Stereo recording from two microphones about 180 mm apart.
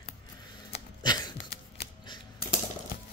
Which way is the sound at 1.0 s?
25° left (ahead or behind).